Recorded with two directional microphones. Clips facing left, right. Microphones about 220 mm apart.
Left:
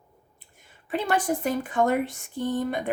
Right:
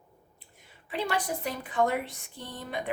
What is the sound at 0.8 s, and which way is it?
Speech, 50° left (ahead or behind).